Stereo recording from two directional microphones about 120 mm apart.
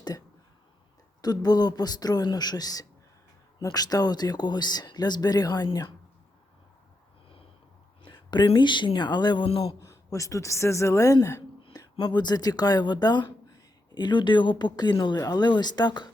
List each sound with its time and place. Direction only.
1.2 s speech: 35° left (ahead or behind)
8.0 s speech: 40° left (ahead or behind)
9.6 s speech: 25° left (ahead or behind)